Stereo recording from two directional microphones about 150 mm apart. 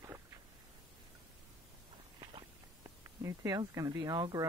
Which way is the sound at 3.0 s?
20° right (ahead or behind).